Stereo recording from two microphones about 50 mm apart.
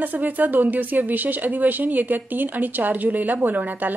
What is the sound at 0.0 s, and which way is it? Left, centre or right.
Speech, right.